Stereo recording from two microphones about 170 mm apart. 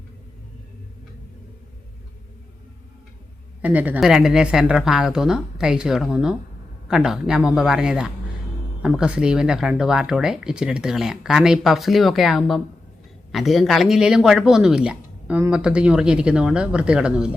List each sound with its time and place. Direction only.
3.6 s speech: 10° right (ahead or behind)